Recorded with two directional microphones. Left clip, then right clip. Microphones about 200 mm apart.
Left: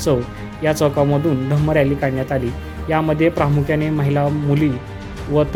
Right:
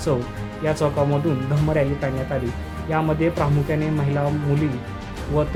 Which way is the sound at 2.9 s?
20° left (ahead or behind).